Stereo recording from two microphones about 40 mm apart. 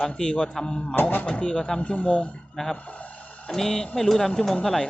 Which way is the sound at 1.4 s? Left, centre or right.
Centre.